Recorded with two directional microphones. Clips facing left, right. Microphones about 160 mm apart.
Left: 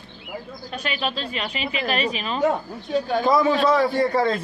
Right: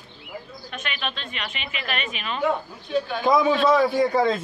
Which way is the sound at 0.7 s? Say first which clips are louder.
Left 5 dB; 35° left (ahead or behind).